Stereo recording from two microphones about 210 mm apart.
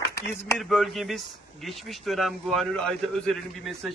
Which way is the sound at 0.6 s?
Centre (ahead or behind).